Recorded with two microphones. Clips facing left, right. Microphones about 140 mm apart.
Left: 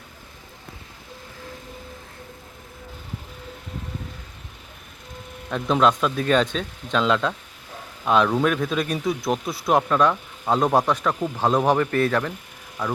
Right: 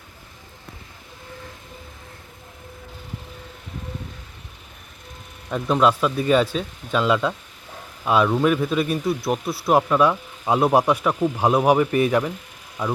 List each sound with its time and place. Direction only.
5.5 s speech: 5° right (ahead or behind)